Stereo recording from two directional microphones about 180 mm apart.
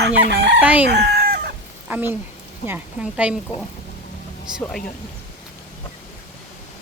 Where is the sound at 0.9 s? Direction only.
65° right (ahead or behind).